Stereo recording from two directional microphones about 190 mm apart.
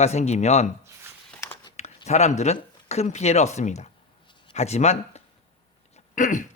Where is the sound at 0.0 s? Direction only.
35° left (ahead or behind).